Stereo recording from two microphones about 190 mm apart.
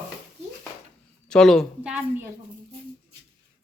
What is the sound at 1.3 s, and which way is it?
A man's voice, 5° left (ahead or behind).